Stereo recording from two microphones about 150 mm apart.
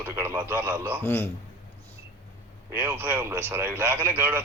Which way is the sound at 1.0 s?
15° left (ahead or behind).